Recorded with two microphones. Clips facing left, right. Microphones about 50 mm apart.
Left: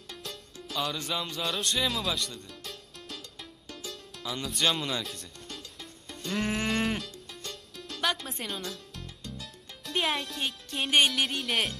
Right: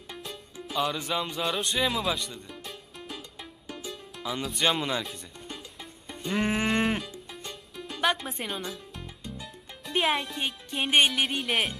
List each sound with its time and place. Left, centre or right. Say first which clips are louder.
0.1 s music: right 2 dB; centre
4.6 s speech: right 2 dB; centre
7.1 s music: right 2 dB; centre